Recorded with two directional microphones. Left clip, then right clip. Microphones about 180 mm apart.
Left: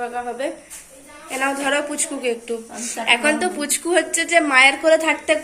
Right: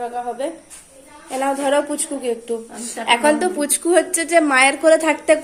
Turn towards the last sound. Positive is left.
turn(degrees=-45)  # may be behind; listen again after turning